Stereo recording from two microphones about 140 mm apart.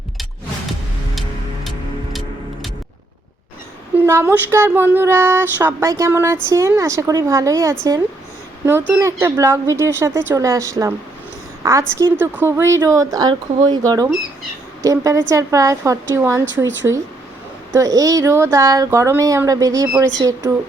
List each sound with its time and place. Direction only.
3.9 s child singing: 15° right (ahead or behind)
5.9 s speech: 20° right (ahead or behind)
9.0 s a woman's voice: 20° right (ahead or behind)